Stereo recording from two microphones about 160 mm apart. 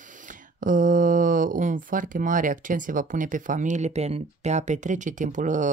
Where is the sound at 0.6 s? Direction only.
55° right (ahead or behind).